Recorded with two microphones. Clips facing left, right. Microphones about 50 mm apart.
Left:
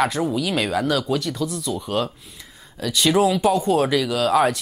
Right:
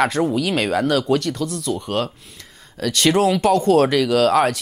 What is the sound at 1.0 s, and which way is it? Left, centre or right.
Speech, right.